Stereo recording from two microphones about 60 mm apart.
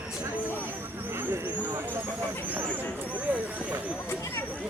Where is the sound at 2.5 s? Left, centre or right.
Right.